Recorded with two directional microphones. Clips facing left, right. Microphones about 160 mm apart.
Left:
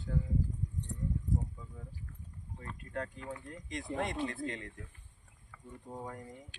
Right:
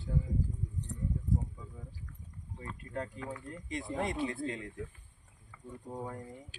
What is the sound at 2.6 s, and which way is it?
Speech, 15° right (ahead or behind).